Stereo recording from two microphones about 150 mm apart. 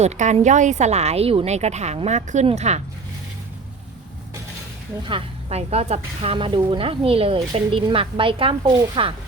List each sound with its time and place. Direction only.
0.0 s speech: 50° right (ahead or behind)
5.0 s speech: 40° right (ahead or behind)